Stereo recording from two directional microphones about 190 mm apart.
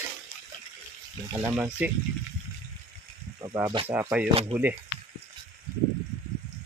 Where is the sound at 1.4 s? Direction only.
10° right (ahead or behind).